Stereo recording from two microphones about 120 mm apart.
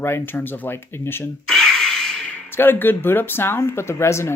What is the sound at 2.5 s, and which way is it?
Speech, 20° left (ahead or behind).